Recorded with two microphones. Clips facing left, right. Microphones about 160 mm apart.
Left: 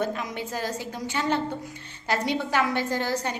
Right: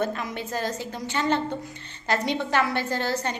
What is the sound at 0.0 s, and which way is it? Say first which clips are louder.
A woman's voice: right 1 dB; 15° left (ahead or behind).